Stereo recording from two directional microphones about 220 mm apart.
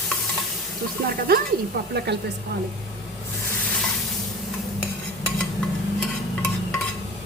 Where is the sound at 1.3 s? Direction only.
45° right (ahead or behind).